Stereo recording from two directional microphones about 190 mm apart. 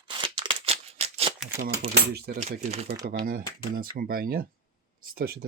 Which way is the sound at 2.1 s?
55° right (ahead or behind).